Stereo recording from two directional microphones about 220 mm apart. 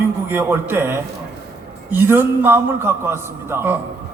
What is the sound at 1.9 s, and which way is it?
A woman's voice, 10° right (ahead or behind).